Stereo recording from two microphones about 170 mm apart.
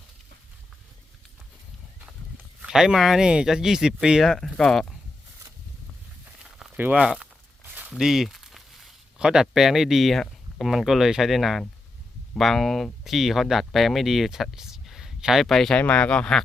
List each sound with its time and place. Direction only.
2.6 s speech: 5° right (ahead or behind)
6.2 s walk: 5° right (ahead or behind)
12.3 s speech: centre (ahead or behind)